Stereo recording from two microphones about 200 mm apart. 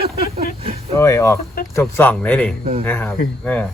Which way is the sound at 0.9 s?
15° left (ahead or behind).